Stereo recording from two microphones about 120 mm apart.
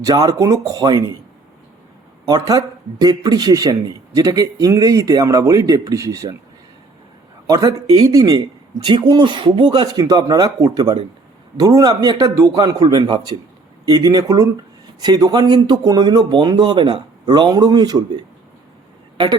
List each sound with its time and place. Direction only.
0.0 s a man's voice: 30° right (ahead or behind)
2.2 s a man's voice: 30° right (ahead or behind)
7.4 s a man's voice: 30° right (ahead or behind)
8.8 s speech: 45° right (ahead or behind)
19.1 s speech: 40° right (ahead or behind)